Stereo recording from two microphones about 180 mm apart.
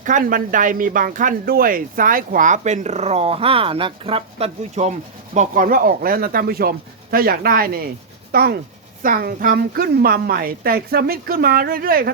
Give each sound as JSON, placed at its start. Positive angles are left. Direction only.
{"t": 0.0, "sound": "a woman's voice", "side_deg": -45}